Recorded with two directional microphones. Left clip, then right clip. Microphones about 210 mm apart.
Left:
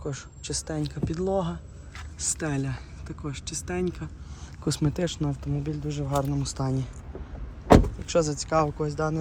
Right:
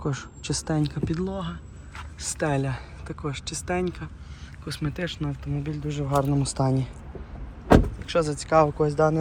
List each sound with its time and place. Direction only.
0.0 s speech: centre (ahead or behind)
1.3 s speech: 20° left (ahead or behind)
2.1 s speech: 10° left (ahead or behind)
4.6 s speech: 20° left (ahead or behind); by 6.8 s 5° left (ahead or behind)
8.1 s speech: 15° left (ahead or behind)